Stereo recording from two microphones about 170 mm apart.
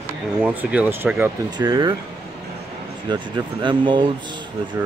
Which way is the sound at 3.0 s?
30° right (ahead or behind).